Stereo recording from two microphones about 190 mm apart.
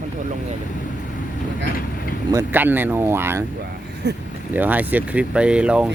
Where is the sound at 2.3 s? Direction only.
10° right (ahead or behind).